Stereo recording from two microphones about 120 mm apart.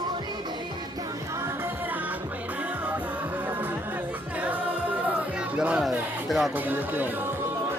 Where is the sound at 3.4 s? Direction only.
15° right (ahead or behind).